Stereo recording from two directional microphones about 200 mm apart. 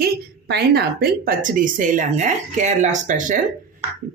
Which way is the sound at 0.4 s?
55° right (ahead or behind).